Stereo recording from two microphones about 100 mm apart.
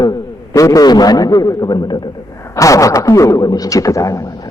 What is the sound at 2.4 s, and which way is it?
A man's voice, 30° left (ahead or behind).